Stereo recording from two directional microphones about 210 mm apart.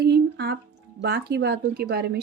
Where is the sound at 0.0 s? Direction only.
50° right (ahead or behind).